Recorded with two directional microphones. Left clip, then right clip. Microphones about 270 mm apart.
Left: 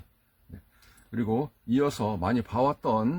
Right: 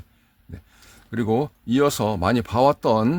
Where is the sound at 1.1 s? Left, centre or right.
Right.